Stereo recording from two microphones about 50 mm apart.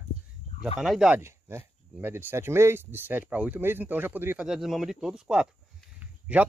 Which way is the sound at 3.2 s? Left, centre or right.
Right.